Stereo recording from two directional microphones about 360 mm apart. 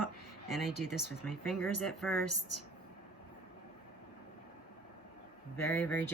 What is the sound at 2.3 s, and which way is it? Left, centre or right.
Speech, left.